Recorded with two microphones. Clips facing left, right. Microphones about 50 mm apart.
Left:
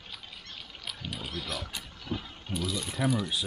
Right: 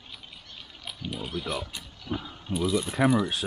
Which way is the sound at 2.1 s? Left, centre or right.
Centre.